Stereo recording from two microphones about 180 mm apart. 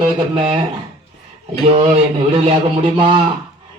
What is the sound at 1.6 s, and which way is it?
A man's voice, 35° right (ahead or behind).